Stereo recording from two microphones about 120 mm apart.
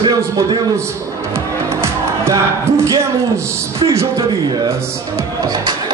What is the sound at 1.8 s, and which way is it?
Music, 25° right (ahead or behind).